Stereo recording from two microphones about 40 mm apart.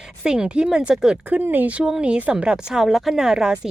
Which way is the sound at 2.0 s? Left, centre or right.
Right.